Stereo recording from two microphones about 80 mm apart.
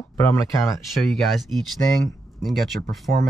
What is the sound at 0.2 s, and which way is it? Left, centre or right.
Speech, left.